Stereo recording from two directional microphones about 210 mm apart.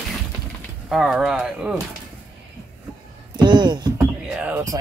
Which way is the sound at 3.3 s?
20° right (ahead or behind).